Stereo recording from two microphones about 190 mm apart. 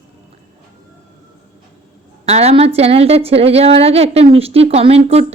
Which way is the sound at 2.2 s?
35° right (ahead or behind).